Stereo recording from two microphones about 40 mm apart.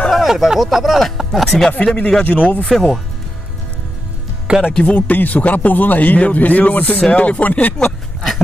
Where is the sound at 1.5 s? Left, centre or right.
Centre.